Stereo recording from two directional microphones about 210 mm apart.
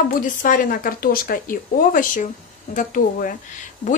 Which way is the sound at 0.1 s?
40° left (ahead or behind).